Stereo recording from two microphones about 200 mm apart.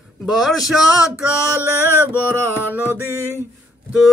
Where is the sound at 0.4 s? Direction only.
Centre (ahead or behind).